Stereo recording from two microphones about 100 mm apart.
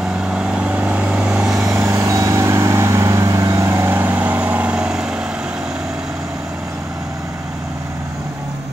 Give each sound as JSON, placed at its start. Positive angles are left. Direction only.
{"t": 0.3, "sound": "vehicle", "side_deg": -10}
{"t": 1.8, "sound": "vehicle", "side_deg": -30}